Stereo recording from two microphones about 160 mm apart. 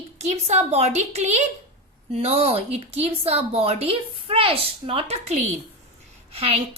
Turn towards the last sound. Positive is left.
turn(degrees=-40)  # may be behind; listen again after turning